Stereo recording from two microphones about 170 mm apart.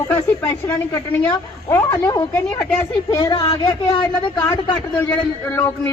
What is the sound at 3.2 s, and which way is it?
Speech, 25° left (ahead or behind).